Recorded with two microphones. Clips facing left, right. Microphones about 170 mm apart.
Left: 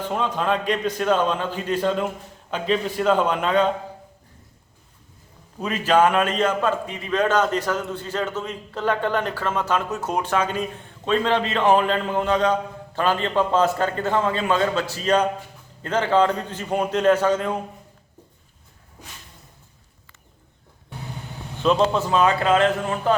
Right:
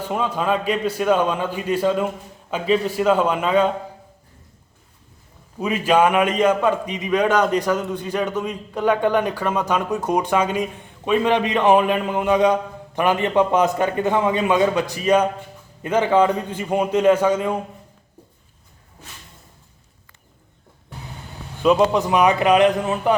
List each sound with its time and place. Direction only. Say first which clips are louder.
0.0 s a man's voice: right 1 dB; 10° right (ahead or behind)
5.5 s a man's voice: right 1 dB; 10° right (ahead or behind)
21.6 s a man's voice: right 3 dB; 10° right (ahead or behind)